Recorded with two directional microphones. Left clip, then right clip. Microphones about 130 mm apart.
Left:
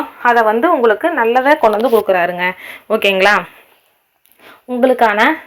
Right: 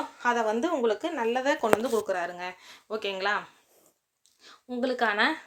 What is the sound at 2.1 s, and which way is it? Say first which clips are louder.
Speech: left 18 dB; 45° left (ahead or behind).